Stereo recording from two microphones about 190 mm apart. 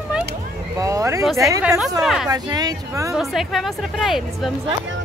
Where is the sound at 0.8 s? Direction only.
15° right (ahead or behind).